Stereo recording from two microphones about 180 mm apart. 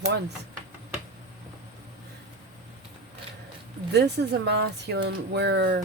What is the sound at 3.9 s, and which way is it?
Speech, 70° right (ahead or behind).